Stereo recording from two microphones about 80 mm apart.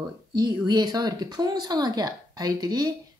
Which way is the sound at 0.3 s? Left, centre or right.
Right.